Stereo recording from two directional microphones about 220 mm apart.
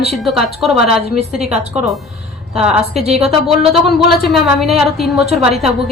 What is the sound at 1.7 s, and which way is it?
A woman's voice, centre (ahead or behind).